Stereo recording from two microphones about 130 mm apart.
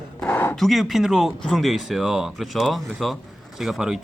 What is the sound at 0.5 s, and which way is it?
Speech, centre (ahead or behind).